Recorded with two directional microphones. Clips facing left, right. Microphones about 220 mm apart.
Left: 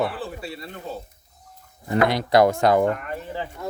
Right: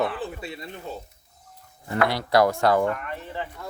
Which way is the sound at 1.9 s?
20° left (ahead or behind).